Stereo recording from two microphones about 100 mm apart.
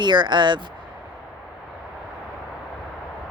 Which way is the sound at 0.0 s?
50° right (ahead or behind).